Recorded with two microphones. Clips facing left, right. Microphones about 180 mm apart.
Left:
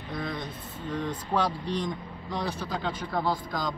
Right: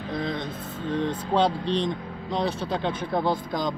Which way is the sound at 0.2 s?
25° right (ahead or behind).